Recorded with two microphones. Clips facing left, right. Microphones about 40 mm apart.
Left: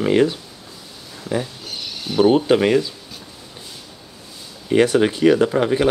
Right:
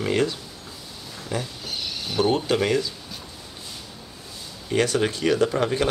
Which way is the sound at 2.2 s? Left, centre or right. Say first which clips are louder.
Left 7 dB; centre.